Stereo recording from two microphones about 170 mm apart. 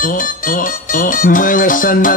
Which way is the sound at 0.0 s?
55° left (ahead or behind).